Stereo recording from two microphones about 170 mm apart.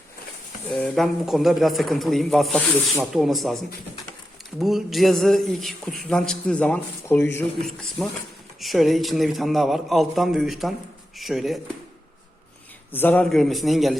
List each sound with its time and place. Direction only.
0.7 s a man's voice: 5° left (ahead or behind)
4.6 s a man's voice: centre (ahead or behind)
12.9 s a man's voice: 10° left (ahead or behind)